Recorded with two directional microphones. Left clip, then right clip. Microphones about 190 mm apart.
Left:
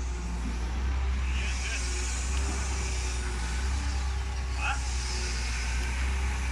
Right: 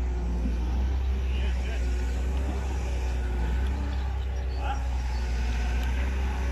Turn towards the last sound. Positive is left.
turn(degrees=-35)  # may be behind; listen again after turning